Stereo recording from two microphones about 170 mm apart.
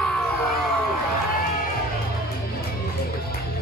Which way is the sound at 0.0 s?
Centre (ahead or behind).